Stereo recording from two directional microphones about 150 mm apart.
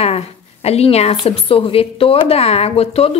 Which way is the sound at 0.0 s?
45° left (ahead or behind).